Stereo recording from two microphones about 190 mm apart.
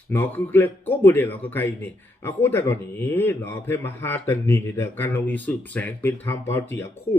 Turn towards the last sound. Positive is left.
turn(degrees=15)  # may be behind; listen again after turning